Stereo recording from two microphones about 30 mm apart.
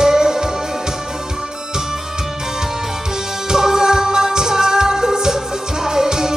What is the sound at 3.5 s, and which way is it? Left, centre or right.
Music, centre.